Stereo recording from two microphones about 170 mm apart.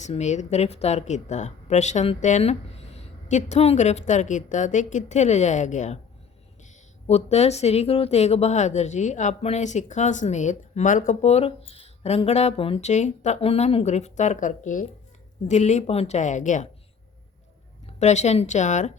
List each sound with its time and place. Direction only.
0.0 s a woman's voice: 45° left (ahead or behind)
7.1 s a woman's voice: 40° left (ahead or behind)
17.8 s speech: 40° left (ahead or behind)